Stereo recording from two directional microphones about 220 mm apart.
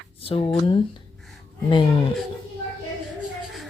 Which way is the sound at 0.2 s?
25° left (ahead or behind).